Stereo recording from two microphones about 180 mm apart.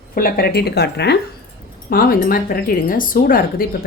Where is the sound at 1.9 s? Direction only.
55° left (ahead or behind).